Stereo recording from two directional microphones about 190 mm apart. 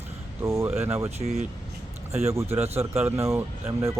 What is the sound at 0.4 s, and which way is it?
Speech, 15° right (ahead or behind).